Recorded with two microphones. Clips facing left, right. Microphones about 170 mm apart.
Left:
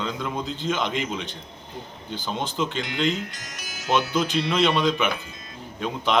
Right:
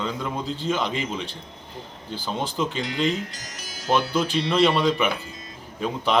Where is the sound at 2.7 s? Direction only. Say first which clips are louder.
Right 1 dB; 35° right (ahead or behind).